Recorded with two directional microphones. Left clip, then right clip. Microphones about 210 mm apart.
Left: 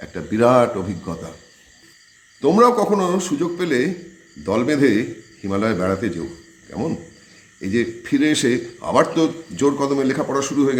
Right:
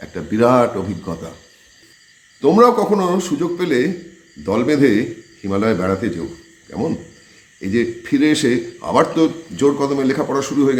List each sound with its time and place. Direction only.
0.0 s a man's voice: 10° left (ahead or behind)
2.4 s a man's voice: 10° left (ahead or behind)
7.6 s a man's voice: 10° left (ahead or behind)